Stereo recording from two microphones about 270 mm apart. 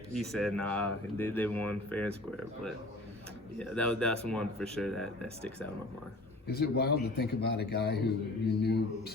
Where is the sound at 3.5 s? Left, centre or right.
Centre.